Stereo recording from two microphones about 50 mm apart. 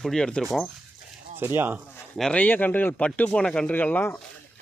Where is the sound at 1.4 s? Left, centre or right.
Right.